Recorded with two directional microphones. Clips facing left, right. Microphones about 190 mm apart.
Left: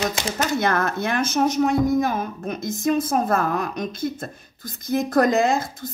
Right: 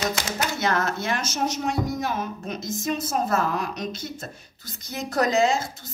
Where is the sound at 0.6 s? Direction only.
55° left (ahead or behind).